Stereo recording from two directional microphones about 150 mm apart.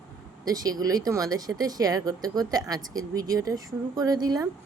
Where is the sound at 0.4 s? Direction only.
25° right (ahead or behind).